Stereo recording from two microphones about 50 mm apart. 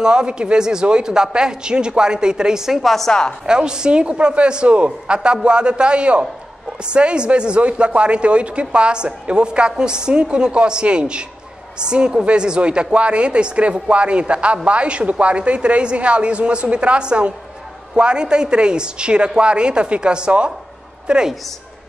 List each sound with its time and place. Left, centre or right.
0.0 s speech: centre
3.1 s speech: centre
3.4 s a woman's voice: centre